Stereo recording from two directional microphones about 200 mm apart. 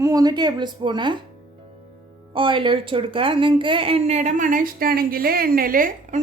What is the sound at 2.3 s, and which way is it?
A woman's voice, 25° right (ahead or behind).